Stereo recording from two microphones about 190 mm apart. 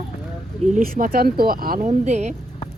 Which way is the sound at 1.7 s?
35° right (ahead or behind).